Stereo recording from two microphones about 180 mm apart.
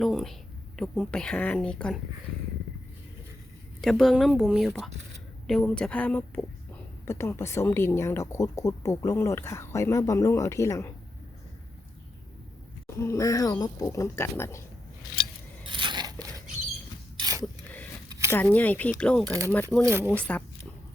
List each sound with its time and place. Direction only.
0.0 s speech: centre (ahead or behind)
3.8 s speech: centre (ahead or behind)
13.0 s speech: 15° left (ahead or behind)
15.6 s coin: 25° right (ahead or behind)
17.2 s a sound: 20° right (ahead or behind)
18.3 s speech: 10° left (ahead or behind)
19.3 s speech: 15° right (ahead or behind)
20.1 s speech: 10° left (ahead or behind)